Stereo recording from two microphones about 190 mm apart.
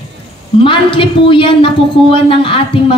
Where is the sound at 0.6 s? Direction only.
25° left (ahead or behind).